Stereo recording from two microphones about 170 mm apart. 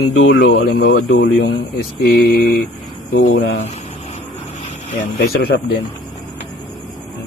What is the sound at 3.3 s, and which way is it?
Speech, 85° left.